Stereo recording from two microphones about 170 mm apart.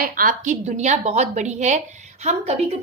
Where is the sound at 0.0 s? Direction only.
55° right (ahead or behind).